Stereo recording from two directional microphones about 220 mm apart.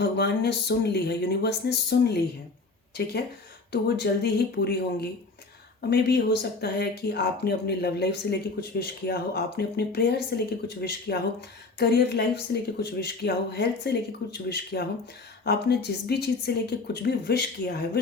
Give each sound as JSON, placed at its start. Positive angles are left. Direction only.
{"t": 0.0, "sound": "speech", "side_deg": 50}